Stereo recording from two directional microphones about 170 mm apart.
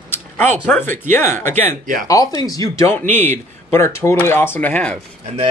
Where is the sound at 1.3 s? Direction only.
45° right (ahead or behind).